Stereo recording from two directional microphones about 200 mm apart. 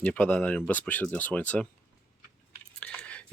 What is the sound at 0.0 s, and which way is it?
Speech, 5° left (ahead or behind).